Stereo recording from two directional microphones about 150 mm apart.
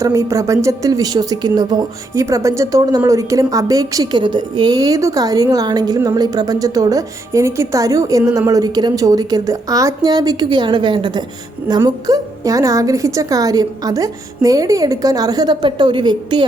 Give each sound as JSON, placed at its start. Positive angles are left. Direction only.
{"t": 0.0, "sound": "a woman's voice", "side_deg": -20}